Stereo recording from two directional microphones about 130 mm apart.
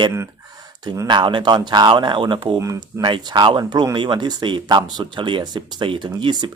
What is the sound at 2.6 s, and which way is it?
Speech, 25° right (ahead or behind).